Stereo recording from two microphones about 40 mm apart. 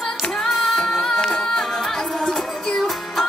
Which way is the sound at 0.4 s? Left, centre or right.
Centre.